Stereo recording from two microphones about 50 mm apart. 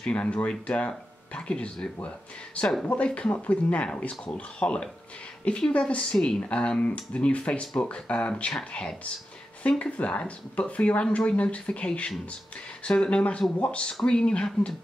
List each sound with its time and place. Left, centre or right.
0.0 s speech: left